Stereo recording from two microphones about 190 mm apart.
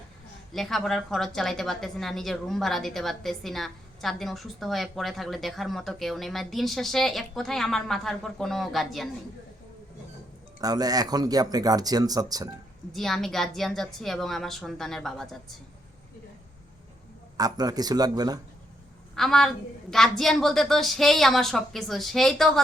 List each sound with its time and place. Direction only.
0.5 s a woman's voice: centre (ahead or behind)
10.6 s speech: 20° right (ahead or behind)
12.9 s a woman's voice: centre (ahead or behind)
17.3 s speech: 20° right (ahead or behind)
19.1 s a woman's voice: centre (ahead or behind)